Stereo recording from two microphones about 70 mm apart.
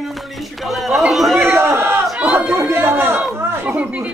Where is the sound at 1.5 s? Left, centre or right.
Right.